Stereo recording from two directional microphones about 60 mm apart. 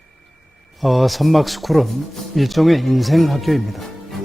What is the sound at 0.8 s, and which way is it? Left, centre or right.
Speech, centre.